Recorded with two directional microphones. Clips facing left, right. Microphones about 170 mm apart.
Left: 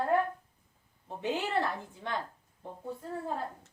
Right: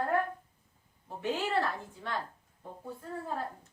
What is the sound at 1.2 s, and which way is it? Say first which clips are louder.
Speech: even; 20° left (ahead or behind).